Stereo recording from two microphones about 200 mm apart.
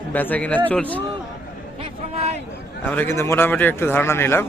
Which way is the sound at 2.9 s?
10° left (ahead or behind).